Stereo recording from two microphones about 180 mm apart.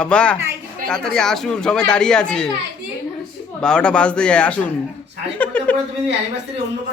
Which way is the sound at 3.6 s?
5° left (ahead or behind).